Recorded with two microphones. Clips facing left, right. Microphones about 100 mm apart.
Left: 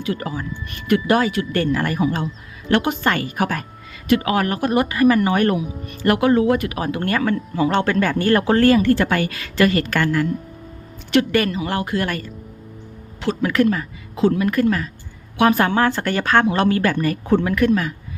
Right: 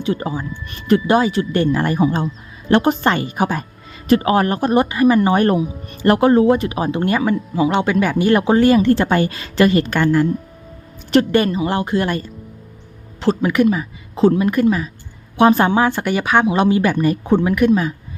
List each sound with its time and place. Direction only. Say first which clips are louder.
0.0 s speech: right 3 dB; 25° right (ahead or behind)
13.4 s speech: even; 15° right (ahead or behind)
14.2 s speech: right 3 dB; 30° right (ahead or behind)
15.4 s speech: right 3 dB; 25° right (ahead or behind)
15.7 s speech: right 2 dB; 15° right (ahead or behind)